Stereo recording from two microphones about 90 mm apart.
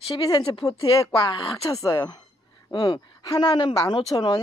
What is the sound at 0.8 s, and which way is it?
Speech, 70° left (ahead or behind).